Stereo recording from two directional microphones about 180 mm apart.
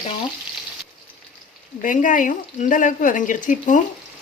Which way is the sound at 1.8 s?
45° left (ahead or behind).